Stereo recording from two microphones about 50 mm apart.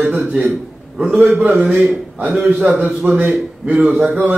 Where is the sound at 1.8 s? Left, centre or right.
Right.